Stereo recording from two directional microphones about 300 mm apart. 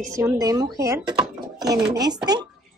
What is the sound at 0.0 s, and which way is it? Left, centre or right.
Speech, centre.